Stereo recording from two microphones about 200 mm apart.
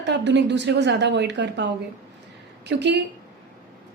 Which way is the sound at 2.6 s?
60° right (ahead or behind).